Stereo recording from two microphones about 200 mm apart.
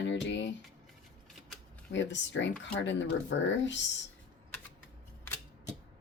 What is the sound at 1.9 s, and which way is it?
Speech, 65° left (ahead or behind).